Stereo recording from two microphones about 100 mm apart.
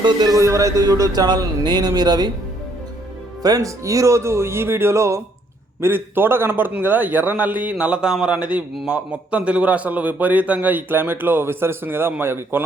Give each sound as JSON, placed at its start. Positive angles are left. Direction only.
{"t": 0.0, "sound": "speech", "side_deg": -45}
{"t": 0.3, "sound": "speech", "side_deg": -30}
{"t": 3.4, "sound": "a man's voice", "side_deg": -35}